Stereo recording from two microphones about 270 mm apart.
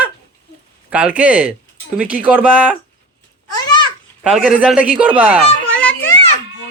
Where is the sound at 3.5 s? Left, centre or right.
Centre.